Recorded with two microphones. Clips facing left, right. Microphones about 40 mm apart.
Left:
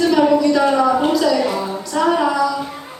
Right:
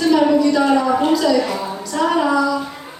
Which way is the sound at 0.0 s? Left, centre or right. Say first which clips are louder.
Even; centre.